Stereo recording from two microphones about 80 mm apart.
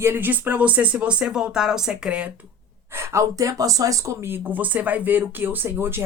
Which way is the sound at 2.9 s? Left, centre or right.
Right.